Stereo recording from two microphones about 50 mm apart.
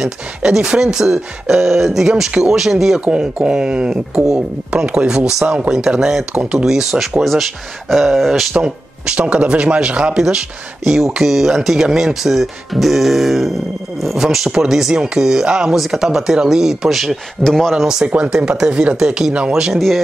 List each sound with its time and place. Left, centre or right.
0.0 s speech: centre
3.1 s speech: centre
5.7 s speech: centre
8.5 s speech: centre
10.1 s speech: centre
17.4 s speech: centre
17.7 s speech: centre
18.0 s speech: right